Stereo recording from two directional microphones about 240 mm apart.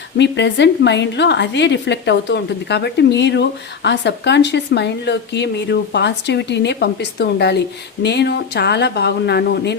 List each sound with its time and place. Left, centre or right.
0.2 s speech: left